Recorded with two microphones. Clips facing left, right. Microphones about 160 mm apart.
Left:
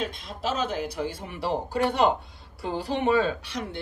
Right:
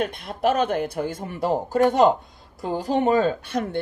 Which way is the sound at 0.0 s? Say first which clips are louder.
Right 7 dB; 60° right (ahead or behind).